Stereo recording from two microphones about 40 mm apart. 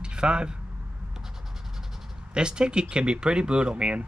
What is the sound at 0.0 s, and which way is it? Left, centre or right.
Speech, right.